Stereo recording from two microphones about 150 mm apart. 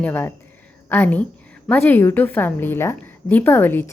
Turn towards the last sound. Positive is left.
turn(degrees=15)  # may be behind; listen again after turning